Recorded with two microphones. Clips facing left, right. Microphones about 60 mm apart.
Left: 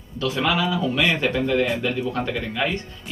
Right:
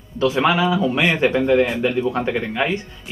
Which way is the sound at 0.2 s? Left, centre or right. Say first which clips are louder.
Right 5 dB; right.